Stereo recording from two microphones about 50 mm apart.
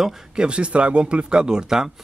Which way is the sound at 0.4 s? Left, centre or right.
Right.